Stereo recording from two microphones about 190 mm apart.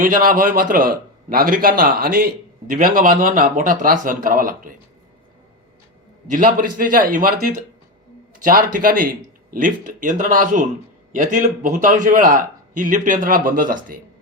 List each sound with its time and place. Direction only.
0.0 s a man's voice: 45° right (ahead or behind)
6.3 s a man's voice: 45° right (ahead or behind)